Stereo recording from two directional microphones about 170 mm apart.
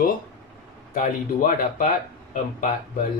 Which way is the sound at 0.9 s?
55° left (ahead or behind).